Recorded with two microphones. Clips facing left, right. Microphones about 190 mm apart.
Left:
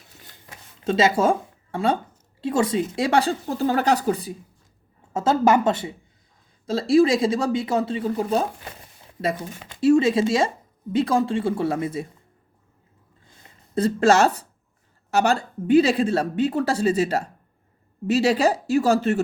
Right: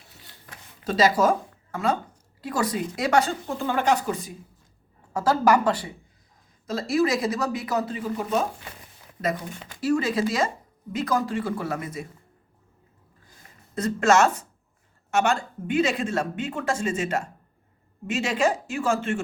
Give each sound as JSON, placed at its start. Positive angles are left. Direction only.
{"t": 0.9, "sound": "speech", "side_deg": 25}
{"t": 5.1, "sound": "speech", "side_deg": 25}
{"t": 13.7, "sound": "speech", "side_deg": 30}